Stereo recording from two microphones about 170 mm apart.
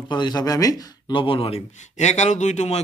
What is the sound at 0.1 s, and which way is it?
Speech, 25° left (ahead or behind).